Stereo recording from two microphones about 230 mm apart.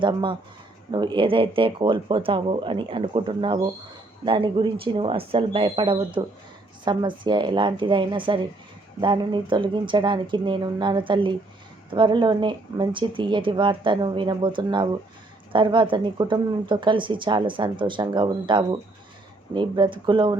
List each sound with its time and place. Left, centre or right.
0.0 s speech: right